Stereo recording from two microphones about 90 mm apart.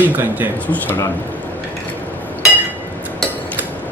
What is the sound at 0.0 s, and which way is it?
Speech, 20° right (ahead or behind).